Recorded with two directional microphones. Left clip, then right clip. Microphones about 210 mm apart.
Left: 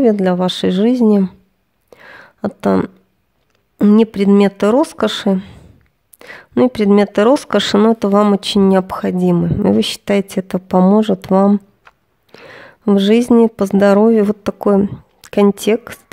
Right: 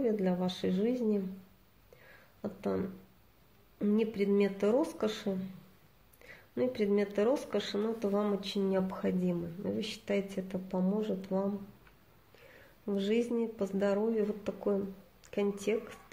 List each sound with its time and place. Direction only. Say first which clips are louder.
0.0 s speech: left 19 dB; 45° left (ahead or behind)
2.4 s speech: left 19 dB; 45° left (ahead or behind)